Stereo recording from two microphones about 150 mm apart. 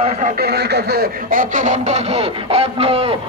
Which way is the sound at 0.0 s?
55° right (ahead or behind).